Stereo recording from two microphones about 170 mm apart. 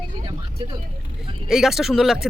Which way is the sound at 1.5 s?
Centre (ahead or behind).